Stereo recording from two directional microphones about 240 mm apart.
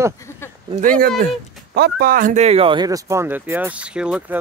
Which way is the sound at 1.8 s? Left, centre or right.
Right.